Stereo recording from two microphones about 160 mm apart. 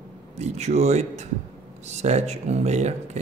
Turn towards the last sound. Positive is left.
turn(degrees=-45)  # may be behind; listen again after turning